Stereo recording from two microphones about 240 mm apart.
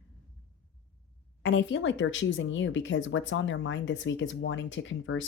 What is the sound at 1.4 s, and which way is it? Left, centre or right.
Speech, left.